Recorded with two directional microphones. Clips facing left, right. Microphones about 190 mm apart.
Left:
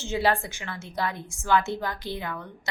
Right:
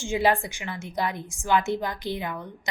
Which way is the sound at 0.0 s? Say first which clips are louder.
Right 2 dB; 15° right (ahead or behind).